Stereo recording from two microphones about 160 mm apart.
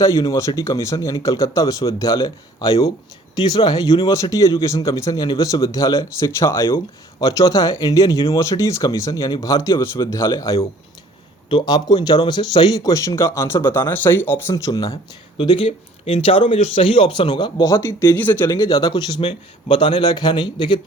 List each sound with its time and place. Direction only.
0.0 s speech: 20° left (ahead or behind)